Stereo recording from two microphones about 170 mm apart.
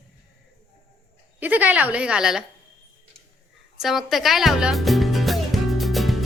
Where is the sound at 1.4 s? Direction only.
10° right (ahead or behind).